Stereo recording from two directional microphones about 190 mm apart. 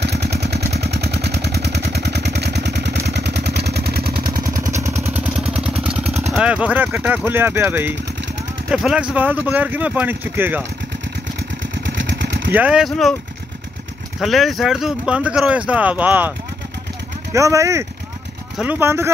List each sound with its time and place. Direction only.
0.0 s vehicle: 60° right (ahead or behind); by 4.8 s 45° right (ahead or behind)
4.8 s vehicle: 15° right (ahead or behind)
6.3 s speech: 5° right (ahead or behind)
11.7 s vehicle: 70° right (ahead or behind)
12.5 s speech: 5° right (ahead or behind)
14.2 s speech: centre (ahead or behind)